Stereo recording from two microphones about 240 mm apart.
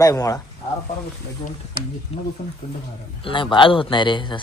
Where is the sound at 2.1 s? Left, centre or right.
Left.